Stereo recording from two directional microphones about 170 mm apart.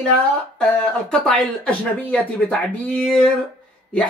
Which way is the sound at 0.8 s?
5° left (ahead or behind).